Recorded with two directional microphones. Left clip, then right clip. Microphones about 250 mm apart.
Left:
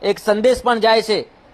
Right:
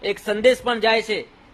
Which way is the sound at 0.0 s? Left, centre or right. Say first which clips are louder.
Left 3 dB; centre.